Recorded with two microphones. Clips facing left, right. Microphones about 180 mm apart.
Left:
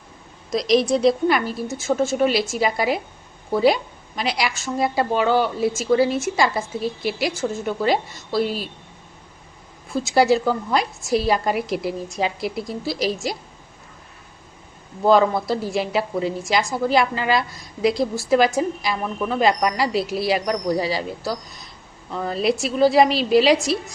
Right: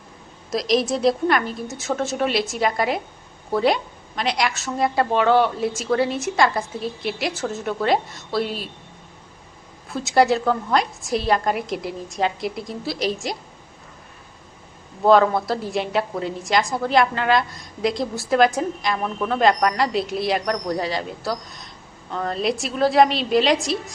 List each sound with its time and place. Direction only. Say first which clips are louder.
0.5 s a woman's voice: left 3 dB; centre (ahead or behind)
9.9 s a woman's voice: left 1 dB; centre (ahead or behind)
15.0 s a woman's voice: right 1 dB; centre (ahead or behind)